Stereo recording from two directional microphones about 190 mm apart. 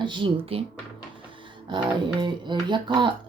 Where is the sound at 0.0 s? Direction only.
25° right (ahead or behind).